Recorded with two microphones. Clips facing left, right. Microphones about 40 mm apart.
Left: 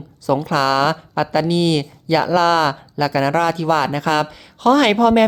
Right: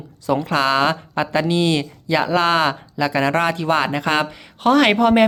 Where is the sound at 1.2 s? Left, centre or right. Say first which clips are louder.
Left 2 dB; right.